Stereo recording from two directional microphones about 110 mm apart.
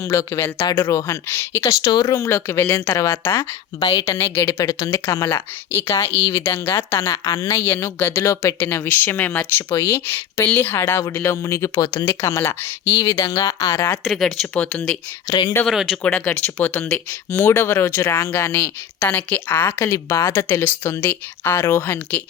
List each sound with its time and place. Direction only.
0.0 s speech: 25° left (ahead or behind)
1.8 s speech: 40° left (ahead or behind); by 3.4 s 20° left (ahead or behind)
3.8 s a woman's voice: 45° left (ahead or behind)
4.0 s speech: 25° left (ahead or behind)
4.6 s speech: 35° left (ahead or behind)
4.9 s speech: 25° left (ahead or behind)
13.0 s speech: 40° left (ahead or behind)
14.0 s speech: centre (ahead or behind)
14.5 s speech: 15° left (ahead or behind)
15.3 s speech: 35° left (ahead or behind)
15.6 s speech: 5° right (ahead or behind)
16.0 s speech: 10° left (ahead or behind)